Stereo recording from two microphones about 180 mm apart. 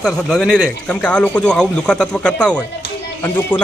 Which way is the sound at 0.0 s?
5° left (ahead or behind).